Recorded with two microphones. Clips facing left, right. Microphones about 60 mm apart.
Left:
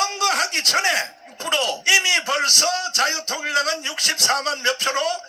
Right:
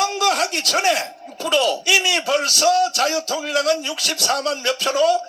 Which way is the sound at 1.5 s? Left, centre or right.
Left.